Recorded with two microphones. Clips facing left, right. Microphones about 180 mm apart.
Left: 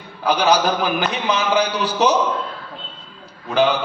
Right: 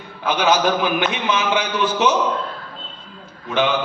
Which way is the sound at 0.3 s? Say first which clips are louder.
Left 1 dB; 35° left (ahead or behind).